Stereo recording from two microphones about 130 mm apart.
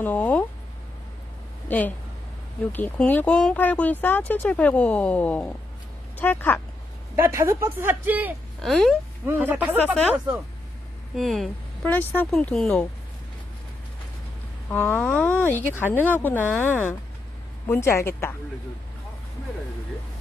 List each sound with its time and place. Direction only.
0.0 s a sound: 15° left (ahead or behind)
1.7 s speech: 10° left (ahead or behind)
7.2 s a woman's voice: 20° right (ahead or behind)
8.5 s speech: centre (ahead or behind)
9.2 s speech: 15° right (ahead or behind)
11.1 s speech: centre (ahead or behind)
11.8 s speech: 15° left (ahead or behind)
14.7 s a woman's voice: 10° left (ahead or behind)